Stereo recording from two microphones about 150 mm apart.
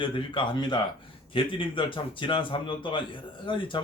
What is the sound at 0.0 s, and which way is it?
A man's voice, 35° left (ahead or behind).